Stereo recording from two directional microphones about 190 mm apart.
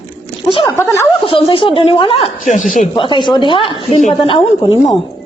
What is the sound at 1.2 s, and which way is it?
Speech, 30° left (ahead or behind).